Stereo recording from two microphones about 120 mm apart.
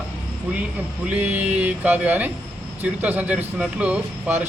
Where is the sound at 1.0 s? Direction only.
10° right (ahead or behind).